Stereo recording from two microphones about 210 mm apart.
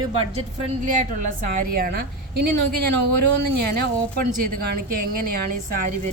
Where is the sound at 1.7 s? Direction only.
45° right (ahead or behind).